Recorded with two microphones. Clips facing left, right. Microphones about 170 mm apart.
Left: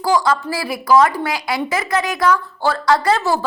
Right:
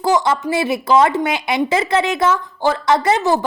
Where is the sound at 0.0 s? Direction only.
20° right (ahead or behind).